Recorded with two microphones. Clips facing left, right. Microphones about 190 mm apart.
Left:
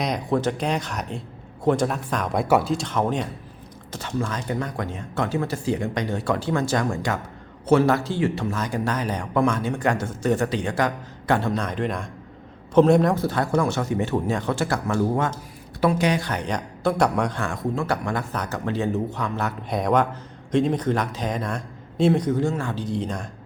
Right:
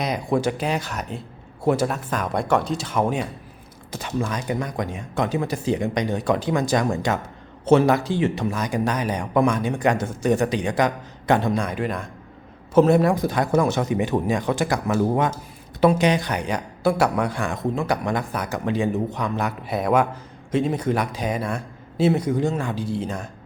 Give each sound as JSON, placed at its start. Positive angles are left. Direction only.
{"t": 0.0, "sound": "speech", "side_deg": -10}